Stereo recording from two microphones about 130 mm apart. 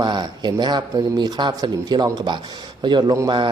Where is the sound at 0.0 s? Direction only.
35° right (ahead or behind).